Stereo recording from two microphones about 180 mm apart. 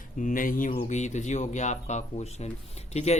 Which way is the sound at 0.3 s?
50° left (ahead or behind).